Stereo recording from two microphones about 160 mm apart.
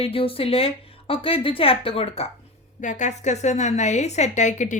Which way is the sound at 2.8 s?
50° left (ahead or behind).